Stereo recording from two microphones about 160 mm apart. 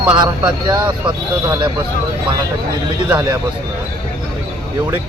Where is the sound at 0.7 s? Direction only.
30° right (ahead or behind).